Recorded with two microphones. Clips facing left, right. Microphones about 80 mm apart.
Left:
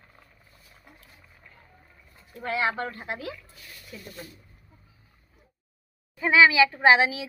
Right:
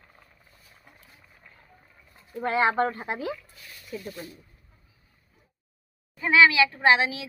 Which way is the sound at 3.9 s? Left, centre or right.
Right.